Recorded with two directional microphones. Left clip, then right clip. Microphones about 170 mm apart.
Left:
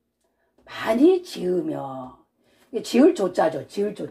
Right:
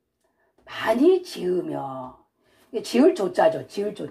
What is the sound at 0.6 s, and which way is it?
A woman's voice, 25° left (ahead or behind).